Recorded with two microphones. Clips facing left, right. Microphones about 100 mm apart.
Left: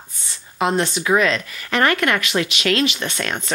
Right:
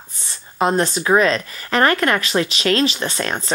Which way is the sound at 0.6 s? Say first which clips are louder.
Right 2 dB; 40° right (ahead or behind).